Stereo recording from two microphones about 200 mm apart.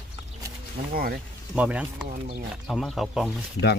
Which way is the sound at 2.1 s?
45° right (ahead or behind).